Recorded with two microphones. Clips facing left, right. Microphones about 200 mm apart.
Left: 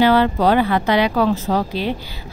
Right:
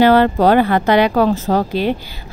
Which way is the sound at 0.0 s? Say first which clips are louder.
Right 3 dB; 50° right (ahead or behind).